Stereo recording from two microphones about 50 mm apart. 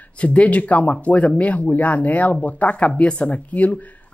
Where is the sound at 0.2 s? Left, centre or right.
Left.